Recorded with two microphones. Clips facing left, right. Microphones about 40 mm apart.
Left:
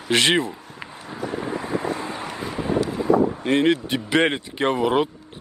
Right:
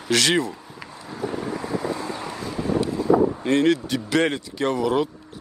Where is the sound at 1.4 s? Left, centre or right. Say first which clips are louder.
Left 3 dB; left.